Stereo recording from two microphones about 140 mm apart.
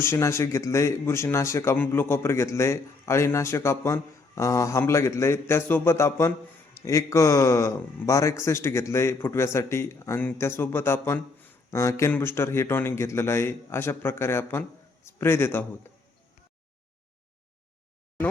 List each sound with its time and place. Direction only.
0.0 s a man's voice: 20° left (ahead or behind)